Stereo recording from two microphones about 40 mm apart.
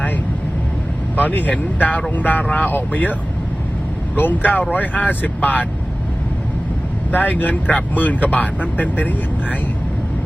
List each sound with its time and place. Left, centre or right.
1.1 s speech: left
7.1 s speech: left